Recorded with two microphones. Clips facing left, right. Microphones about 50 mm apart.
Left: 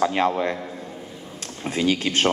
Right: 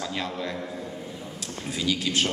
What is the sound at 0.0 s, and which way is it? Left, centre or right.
Speech, left.